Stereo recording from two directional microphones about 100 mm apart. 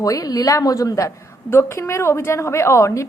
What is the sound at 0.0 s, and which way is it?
A woman's voice, 35° left (ahead or behind).